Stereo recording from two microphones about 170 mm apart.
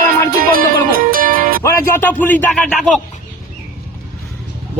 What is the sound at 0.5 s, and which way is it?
Music, 60° right (ahead or behind).